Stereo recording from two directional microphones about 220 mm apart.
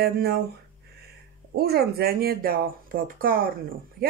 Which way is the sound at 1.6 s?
45° right (ahead or behind).